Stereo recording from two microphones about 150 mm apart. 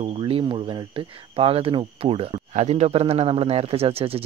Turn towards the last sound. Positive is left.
turn(degrees=-40)  # may be behind; listen again after turning